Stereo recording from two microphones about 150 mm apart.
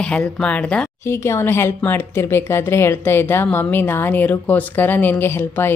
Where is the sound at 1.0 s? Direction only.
15° left (ahead or behind).